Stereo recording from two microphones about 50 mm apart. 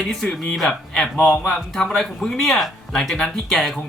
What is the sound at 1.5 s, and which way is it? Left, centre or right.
Speech, centre.